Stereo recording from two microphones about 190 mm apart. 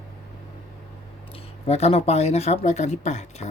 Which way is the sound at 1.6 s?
30° left (ahead or behind).